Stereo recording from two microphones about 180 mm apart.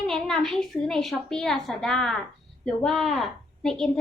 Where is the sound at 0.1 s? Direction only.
5° left (ahead or behind).